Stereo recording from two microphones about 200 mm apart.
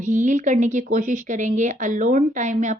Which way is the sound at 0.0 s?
40° right (ahead or behind).